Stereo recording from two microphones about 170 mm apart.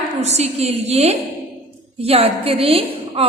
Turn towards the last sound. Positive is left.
turn(degrees=-35)  # may be behind; listen again after turning